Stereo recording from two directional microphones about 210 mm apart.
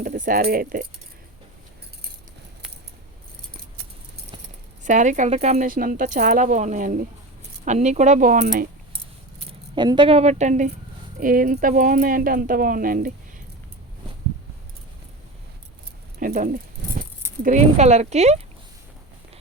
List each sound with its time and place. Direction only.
0.0 s speech: 40° right (ahead or behind)
4.8 s speech: 35° right (ahead or behind)
9.5 s speech: 20° right (ahead or behind); by 13.1 s 40° right (ahead or behind)
16.2 s keys jangling: 40° right (ahead or behind)
17.4 s speech: 35° right (ahead or behind)